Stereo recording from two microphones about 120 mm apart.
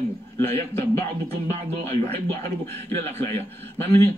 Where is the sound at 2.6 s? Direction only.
20° left (ahead or behind).